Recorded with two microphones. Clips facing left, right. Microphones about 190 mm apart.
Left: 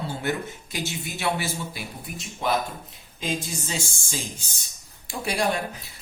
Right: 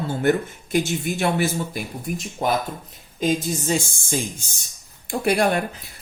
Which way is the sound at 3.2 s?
45° right (ahead or behind).